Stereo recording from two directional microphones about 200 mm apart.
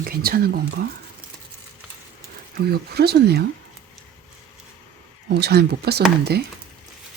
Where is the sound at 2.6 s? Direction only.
50° right (ahead or behind).